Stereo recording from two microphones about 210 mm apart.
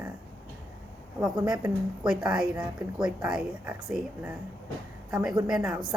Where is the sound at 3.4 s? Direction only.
5° right (ahead or behind).